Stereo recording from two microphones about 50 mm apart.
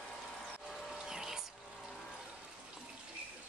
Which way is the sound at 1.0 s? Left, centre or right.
Centre.